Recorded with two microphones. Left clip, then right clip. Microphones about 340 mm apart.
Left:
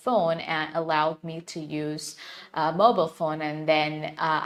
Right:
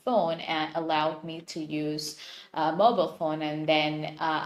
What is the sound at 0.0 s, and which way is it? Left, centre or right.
Speech, left.